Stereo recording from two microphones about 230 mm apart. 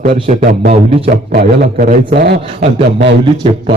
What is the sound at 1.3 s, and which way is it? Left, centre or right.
A man's voice, right.